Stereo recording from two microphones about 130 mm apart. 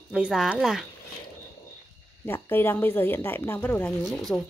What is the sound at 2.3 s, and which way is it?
Speech, 15° left (ahead or behind).